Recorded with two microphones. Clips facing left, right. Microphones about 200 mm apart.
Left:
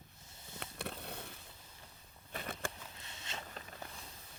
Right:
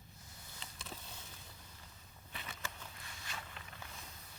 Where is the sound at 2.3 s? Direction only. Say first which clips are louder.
Left 7 dB; 50° left (ahead or behind).